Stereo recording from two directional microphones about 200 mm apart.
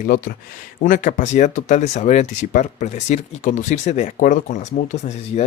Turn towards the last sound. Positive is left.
turn(degrees=35)  # may be behind; listen again after turning